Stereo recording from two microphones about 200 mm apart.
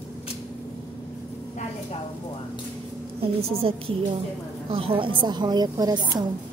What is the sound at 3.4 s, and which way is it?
A woman's voice, 30° right (ahead or behind).